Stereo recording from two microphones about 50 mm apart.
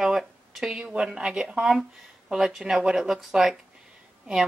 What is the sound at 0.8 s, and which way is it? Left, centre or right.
Speech, centre.